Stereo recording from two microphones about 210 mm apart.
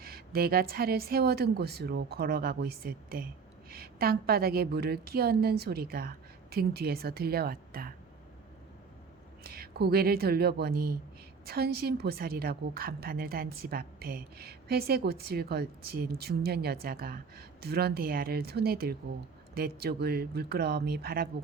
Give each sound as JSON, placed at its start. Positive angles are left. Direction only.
{"t": 0.0, "sound": "a woman's voice", "side_deg": -45}
{"t": 9.4, "sound": "a woman's voice", "side_deg": -45}